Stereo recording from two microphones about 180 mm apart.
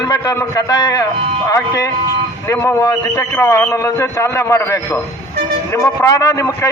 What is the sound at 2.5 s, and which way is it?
A man's voice, 15° left (ahead or behind).